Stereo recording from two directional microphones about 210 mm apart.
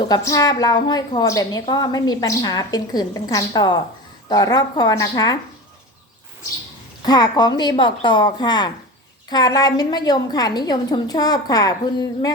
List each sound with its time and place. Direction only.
0.1 s a woman's voice: 15° left (ahead or behind)
7.0 s a woman's voice: 20° left (ahead or behind)